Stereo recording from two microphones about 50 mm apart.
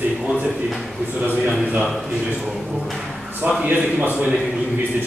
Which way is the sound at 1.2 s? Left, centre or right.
Right.